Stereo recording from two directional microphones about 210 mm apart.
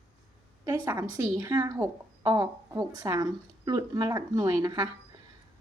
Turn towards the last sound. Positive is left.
turn(degrees=-20)  # may be behind; listen again after turning